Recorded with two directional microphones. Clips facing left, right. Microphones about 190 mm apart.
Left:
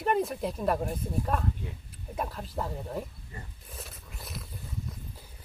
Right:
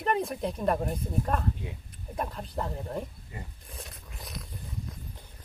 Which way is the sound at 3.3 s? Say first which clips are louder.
Right 3 dB; 15° right (ahead or behind).